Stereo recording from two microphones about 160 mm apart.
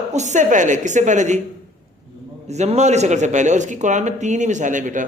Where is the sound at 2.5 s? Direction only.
45° right (ahead or behind).